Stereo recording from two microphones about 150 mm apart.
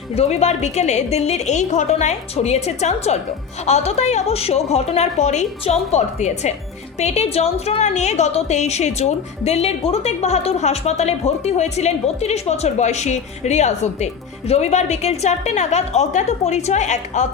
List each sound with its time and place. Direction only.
0.1 s a woman's voice: 45° left (ahead or behind)